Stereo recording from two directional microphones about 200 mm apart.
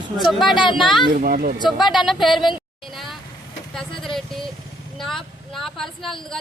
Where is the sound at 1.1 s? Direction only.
45° right (ahead or behind).